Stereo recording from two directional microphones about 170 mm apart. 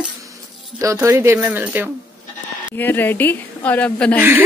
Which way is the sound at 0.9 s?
10° right (ahead or behind).